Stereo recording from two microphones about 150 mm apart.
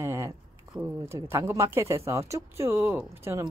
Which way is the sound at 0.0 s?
15° right (ahead or behind).